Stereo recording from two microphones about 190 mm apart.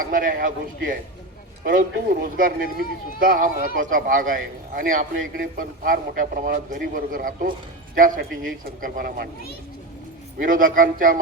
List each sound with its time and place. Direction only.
0.0 s a man's voice: 45° right (ahead or behind)
10.3 s a man's voice: 45° right (ahead or behind)